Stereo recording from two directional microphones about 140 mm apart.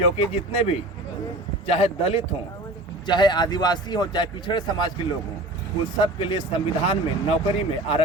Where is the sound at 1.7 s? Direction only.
45° left (ahead or behind).